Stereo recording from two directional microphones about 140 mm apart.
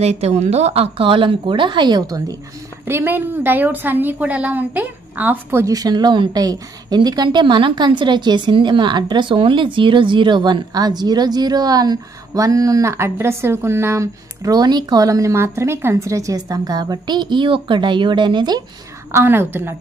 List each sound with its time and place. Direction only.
0.0 s speech: 50° right (ahead or behind); by 2.3 s 25° right (ahead or behind)
2.9 s a woman's voice: 15° right (ahead or behind); by 18.6 s 30° right (ahead or behind)
19.1 s a woman's voice: 15° right (ahead or behind)